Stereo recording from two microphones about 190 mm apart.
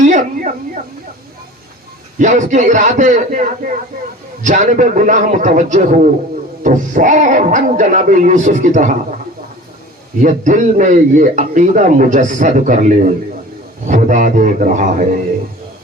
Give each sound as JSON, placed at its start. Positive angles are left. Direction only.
{"t": 0.0, "sound": "a sound", "side_deg": -40}
{"t": 2.1, "sound": "speech", "side_deg": -40}
{"t": 10.2, "sound": "a man's voice", "side_deg": -40}